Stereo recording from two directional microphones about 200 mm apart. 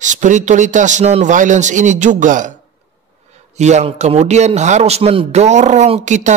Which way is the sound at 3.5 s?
35° right (ahead or behind).